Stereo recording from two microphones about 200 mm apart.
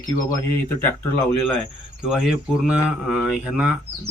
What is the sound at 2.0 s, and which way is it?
Speech, 5° right (ahead or behind).